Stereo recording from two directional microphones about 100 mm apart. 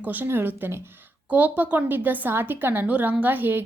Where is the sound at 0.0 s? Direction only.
15° right (ahead or behind).